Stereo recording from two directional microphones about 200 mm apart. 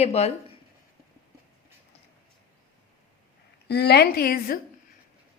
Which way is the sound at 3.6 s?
55° left (ahead or behind).